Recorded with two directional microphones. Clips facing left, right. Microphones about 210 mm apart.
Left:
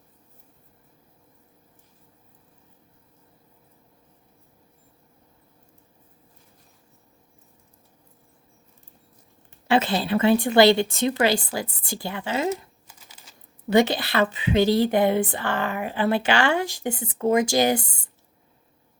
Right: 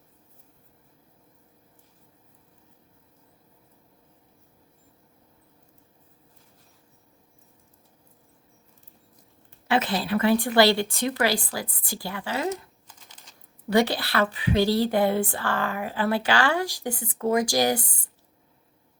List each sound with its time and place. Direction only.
9.6 s speech: 25° left (ahead or behind)
12.9 s shuffling cards: 5° left (ahead or behind)
13.7 s speech: 20° left (ahead or behind)